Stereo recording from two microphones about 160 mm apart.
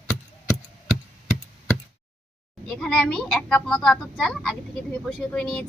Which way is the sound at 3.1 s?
5° left (ahead or behind).